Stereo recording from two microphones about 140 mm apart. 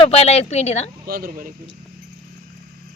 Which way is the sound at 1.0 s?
90° right.